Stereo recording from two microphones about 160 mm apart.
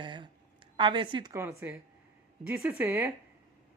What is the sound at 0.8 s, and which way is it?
Speech, 30° right (ahead or behind).